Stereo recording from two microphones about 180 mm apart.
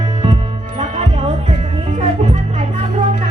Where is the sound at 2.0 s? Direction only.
40° right (ahead or behind).